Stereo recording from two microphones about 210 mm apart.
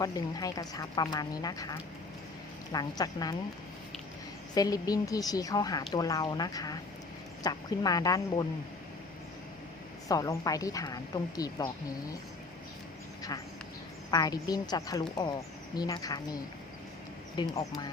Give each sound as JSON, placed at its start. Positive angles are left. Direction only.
{"t": 0.0, "sound": "speech", "side_deg": 15}
{"t": 4.5, "sound": "speech", "side_deg": 15}
{"t": 10.1, "sound": "speech", "side_deg": 15}
{"t": 14.1, "sound": "a woman's voice", "side_deg": 20}